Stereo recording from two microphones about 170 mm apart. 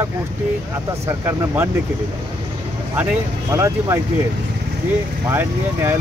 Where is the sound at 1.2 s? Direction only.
15° right (ahead or behind).